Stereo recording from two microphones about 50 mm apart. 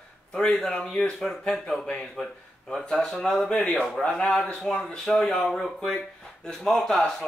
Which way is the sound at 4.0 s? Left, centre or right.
Centre.